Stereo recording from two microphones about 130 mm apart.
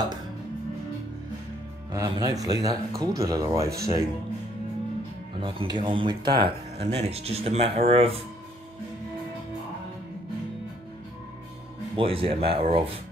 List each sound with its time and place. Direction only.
1.9 s speech: 30° right (ahead or behind)
5.4 s speech: 40° right (ahead or behind)
6.8 s speech: 50° right (ahead or behind)
12.0 s speech: 45° right (ahead or behind)